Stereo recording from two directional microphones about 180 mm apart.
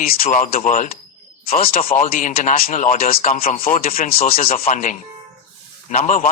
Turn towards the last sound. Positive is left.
turn(degrees=45)  # may be behind; listen again after turning